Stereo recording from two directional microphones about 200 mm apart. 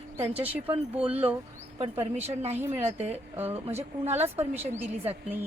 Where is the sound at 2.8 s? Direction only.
30° right (ahead or behind).